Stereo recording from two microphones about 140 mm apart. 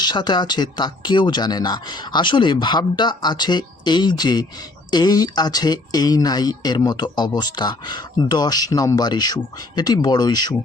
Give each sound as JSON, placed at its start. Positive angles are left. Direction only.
{"t": 0.0, "sound": "speech", "side_deg": 30}